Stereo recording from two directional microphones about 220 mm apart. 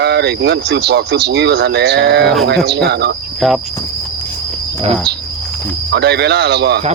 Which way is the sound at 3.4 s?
Centre (ahead or behind).